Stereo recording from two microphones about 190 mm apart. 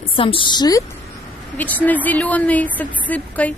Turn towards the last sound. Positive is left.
turn(degrees=10)  # may be behind; listen again after turning